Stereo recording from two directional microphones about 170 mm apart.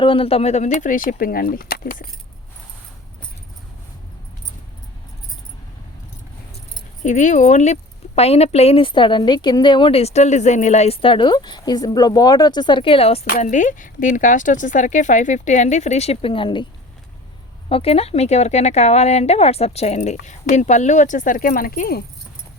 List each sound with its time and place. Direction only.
0.0 s speech: 30° left (ahead or behind); by 2.0 s 55° left (ahead or behind)
7.0 s speech: 45° left (ahead or behind)
13.4 s speech: 45° left (ahead or behind); by 16.6 s 30° left (ahead or behind)
17.7 s speech: 35° left (ahead or behind); by 22.0 s 60° left (ahead or behind)